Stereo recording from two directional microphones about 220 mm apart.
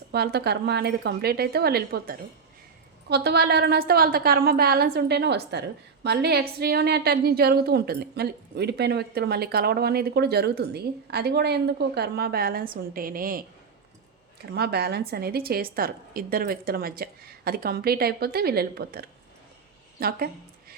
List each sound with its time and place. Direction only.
0.1 s a woman's voice: 45° right (ahead or behind)
14.5 s a woman's voice: 45° right (ahead or behind)